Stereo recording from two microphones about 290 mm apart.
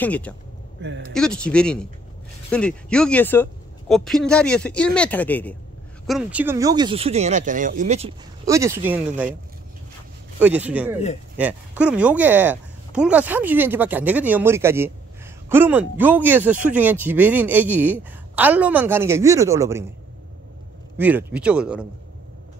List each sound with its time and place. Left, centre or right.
0.0 s speech: centre
0.8 s speech: right
1.1 s speech: centre
10.4 s speech: centre
21.0 s speech: centre